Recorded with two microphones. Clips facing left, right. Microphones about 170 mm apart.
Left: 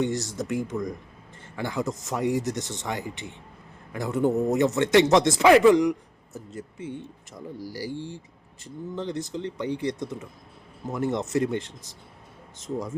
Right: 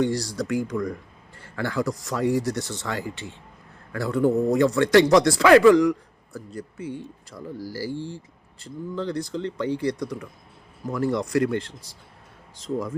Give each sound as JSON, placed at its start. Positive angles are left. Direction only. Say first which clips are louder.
{"t": 0.0, "sound": "a man's voice", "louder": "right 3 dB", "side_deg": 20}